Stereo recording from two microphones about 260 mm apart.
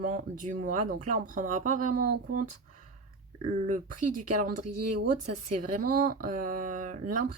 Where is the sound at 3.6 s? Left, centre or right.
Right.